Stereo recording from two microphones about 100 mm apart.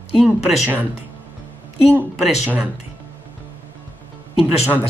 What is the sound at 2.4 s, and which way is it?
Speech, 10° right (ahead or behind).